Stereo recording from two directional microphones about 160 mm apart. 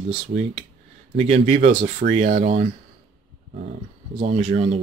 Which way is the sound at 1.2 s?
40° right (ahead or behind).